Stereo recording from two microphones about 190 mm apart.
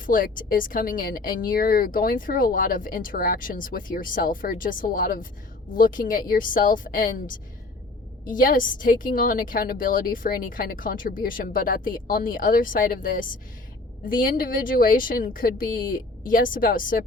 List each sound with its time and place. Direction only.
0.0 s speech: 45° left (ahead or behind)